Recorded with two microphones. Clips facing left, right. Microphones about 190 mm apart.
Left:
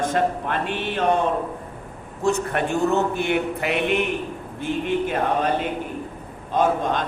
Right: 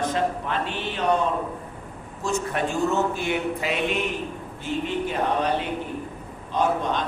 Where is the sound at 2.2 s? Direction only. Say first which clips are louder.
Left 4 dB; 60° left (ahead or behind).